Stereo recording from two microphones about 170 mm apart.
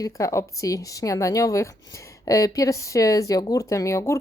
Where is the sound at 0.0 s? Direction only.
20° left (ahead or behind).